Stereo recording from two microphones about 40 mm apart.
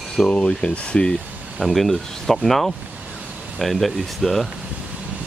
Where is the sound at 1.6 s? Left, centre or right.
Centre.